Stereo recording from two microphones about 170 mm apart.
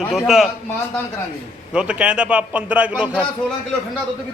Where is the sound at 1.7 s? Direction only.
5° right (ahead or behind).